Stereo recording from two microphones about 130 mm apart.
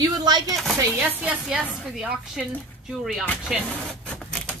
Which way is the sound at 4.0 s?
5° left (ahead or behind).